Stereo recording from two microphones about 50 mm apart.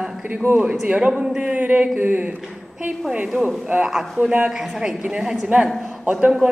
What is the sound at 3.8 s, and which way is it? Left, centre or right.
A woman's voice, centre.